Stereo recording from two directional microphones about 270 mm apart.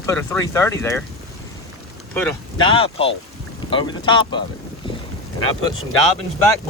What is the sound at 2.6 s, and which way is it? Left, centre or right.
Speech, centre.